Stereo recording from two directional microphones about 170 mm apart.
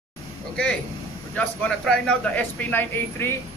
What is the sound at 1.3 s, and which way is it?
Speech, 5° left (ahead or behind).